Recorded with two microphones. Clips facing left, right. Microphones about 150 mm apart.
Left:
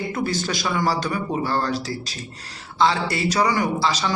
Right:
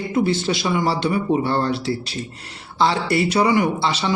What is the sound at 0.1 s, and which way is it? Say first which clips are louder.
Speech: right 5 dB; 25° right (ahead or behind).